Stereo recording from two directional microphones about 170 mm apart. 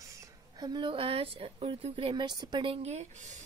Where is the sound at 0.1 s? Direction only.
20° right (ahead or behind).